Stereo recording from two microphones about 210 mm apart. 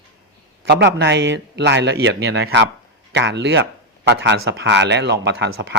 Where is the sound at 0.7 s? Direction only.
55° right (ahead or behind).